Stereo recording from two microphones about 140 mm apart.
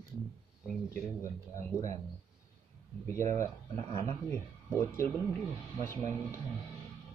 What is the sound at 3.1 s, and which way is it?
Speech, 20° left (ahead or behind).